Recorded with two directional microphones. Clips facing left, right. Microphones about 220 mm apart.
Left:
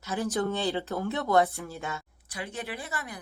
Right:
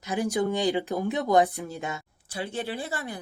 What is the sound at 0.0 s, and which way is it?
Speech, 15° right (ahead or behind).